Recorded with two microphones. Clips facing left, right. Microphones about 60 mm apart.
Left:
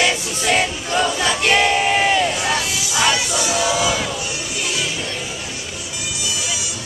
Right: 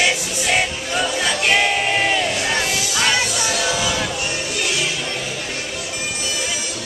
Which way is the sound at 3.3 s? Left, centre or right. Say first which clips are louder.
Left 2 dB; centre.